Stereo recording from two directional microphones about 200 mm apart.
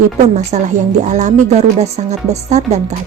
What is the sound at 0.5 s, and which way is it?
A woman's voice, 35° right (ahead or behind).